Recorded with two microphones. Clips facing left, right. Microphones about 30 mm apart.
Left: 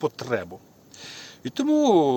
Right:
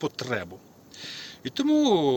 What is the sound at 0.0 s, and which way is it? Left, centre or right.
Speech, right.